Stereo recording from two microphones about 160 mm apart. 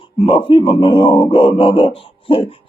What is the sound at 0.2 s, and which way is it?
Speech, 30° left (ahead or behind).